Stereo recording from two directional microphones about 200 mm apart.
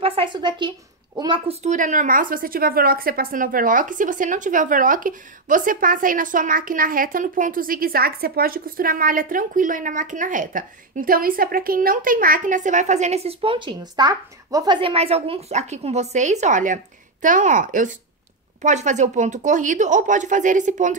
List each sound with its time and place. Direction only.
0.0 s a woman's voice: 25° right (ahead or behind)